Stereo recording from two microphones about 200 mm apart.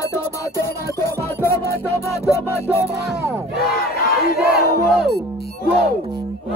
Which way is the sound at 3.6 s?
50° left (ahead or behind).